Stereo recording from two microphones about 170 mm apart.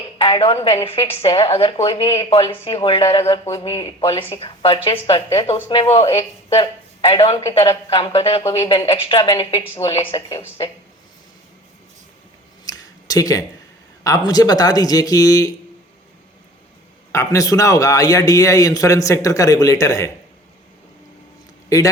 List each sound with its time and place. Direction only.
0.2 s a woman's voice: 30° left (ahead or behind)
10.2 s a man's voice: 20° left (ahead or behind)
12.6 s a sound: 20° left (ahead or behind)
14.0 s a man's voice: 20° left (ahead or behind)
17.1 s a man's voice: 20° left (ahead or behind)